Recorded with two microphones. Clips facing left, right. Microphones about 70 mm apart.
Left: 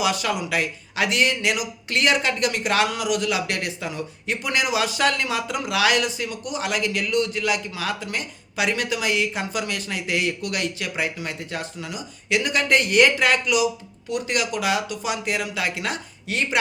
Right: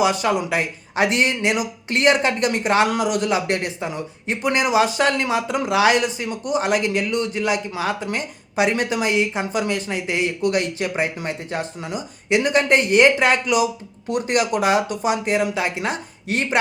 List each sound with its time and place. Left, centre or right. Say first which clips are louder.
0.0 s a man's voice: right 5 dB; right